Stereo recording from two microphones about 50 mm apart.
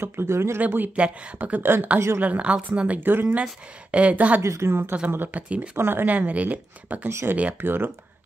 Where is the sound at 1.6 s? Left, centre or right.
Right.